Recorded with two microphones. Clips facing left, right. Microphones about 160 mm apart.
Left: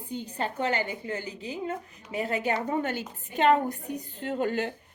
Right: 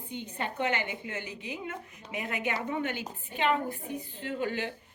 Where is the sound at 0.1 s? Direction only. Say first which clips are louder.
Left 4 dB; 35° left (ahead or behind).